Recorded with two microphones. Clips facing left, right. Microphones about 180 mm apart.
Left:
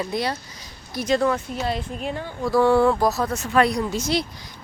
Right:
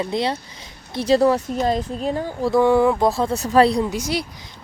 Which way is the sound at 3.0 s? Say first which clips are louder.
Right 3 dB; 30° right (ahead or behind).